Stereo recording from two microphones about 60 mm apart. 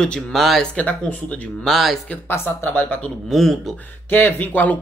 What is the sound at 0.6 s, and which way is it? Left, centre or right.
Speech, centre.